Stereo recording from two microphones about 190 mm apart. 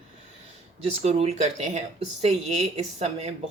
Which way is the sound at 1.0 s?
35° right (ahead or behind).